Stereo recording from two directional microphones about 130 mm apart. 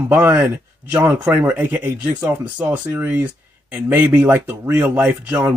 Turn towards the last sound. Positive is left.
turn(degrees=-15)  # may be behind; listen again after turning